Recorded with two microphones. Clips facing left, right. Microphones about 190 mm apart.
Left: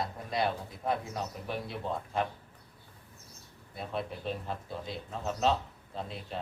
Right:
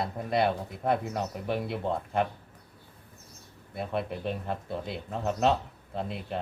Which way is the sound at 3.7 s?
60° right (ahead or behind).